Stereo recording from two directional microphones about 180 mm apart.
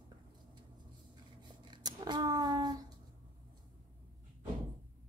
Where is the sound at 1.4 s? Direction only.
25° right (ahead or behind).